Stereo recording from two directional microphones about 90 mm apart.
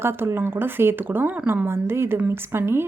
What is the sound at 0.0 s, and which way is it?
A woman's voice, 25° right (ahead or behind).